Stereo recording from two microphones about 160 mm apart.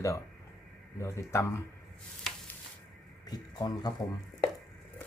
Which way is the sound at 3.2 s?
25° left (ahead or behind).